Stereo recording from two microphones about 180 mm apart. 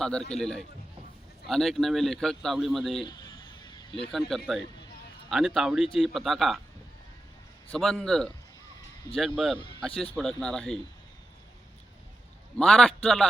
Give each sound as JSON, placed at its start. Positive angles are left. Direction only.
{"t": 0.0, "sound": "a man's voice", "side_deg": 5}
{"t": 3.1, "sound": "vehicle", "side_deg": 20}
{"t": 4.3, "sound": "a man's voice", "side_deg": 0}
{"t": 7.7, "sound": "a man's voice", "side_deg": 0}
{"t": 12.5, "sound": "a man's voice", "side_deg": 5}